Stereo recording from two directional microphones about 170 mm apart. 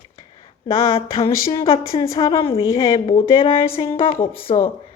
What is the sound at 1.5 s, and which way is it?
A woman's voice, 30° left (ahead or behind).